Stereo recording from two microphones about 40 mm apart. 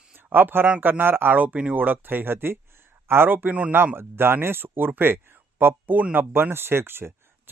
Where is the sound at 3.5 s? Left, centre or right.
Right.